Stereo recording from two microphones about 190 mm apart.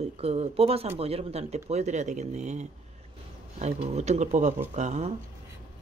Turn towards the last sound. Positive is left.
turn(degrees=-40)  # may be behind; listen again after turning